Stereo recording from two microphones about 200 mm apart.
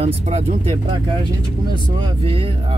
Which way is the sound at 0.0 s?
30° right (ahead or behind).